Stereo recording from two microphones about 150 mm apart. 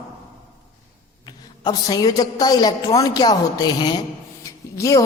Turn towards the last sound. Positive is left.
turn(degrees=20)  # may be behind; listen again after turning